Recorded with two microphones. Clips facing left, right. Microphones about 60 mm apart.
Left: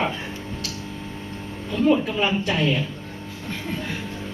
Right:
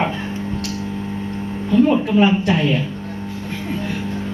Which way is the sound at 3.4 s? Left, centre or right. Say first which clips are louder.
Right 3 dB; centre.